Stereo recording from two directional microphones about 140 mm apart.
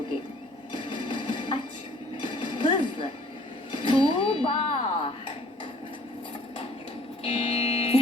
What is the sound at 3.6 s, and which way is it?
Speech, 35° left (ahead or behind).